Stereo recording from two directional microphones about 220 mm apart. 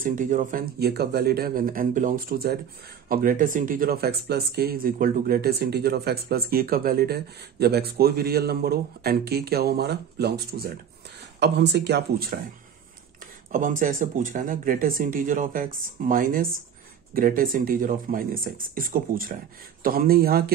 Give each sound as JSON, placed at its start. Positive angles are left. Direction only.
{"t": 0.0, "sound": "speech", "side_deg": -35}
{"t": 13.5, "sound": "speech", "side_deg": -35}